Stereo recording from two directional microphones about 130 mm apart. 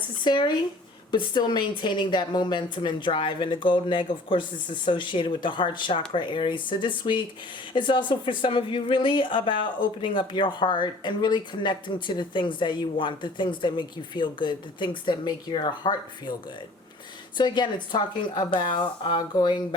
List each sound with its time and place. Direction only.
0.3 s speech: 35° left (ahead or behind)
17.3 s speech: 35° left (ahead or behind)